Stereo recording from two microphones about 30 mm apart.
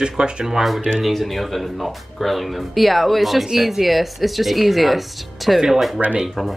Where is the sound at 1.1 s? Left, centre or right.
Centre.